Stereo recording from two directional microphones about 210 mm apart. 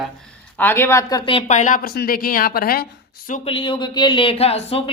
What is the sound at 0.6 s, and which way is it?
Speech, 10° left (ahead or behind).